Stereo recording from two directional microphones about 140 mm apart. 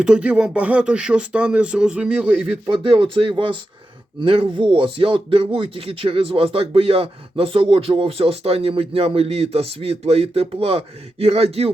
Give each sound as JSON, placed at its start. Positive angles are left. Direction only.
{"t": 0.0, "sound": "speech", "side_deg": -10}
{"t": 2.6, "sound": "speech", "side_deg": -35}